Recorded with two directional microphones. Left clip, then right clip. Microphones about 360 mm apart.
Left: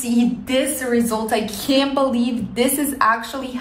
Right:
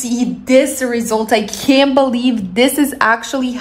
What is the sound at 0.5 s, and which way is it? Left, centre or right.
A woman's voice, centre.